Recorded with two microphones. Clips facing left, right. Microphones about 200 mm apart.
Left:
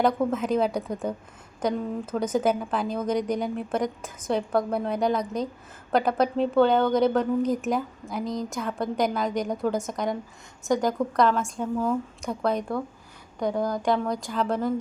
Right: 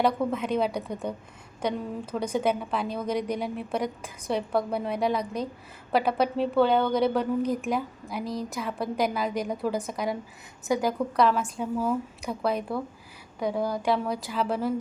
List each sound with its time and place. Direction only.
0.0 s a woman's voice: centre (ahead or behind)
2.1 s a woman's voice: centre (ahead or behind)